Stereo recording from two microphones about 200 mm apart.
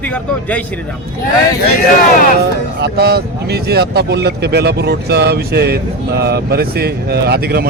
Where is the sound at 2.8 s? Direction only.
55° right (ahead or behind).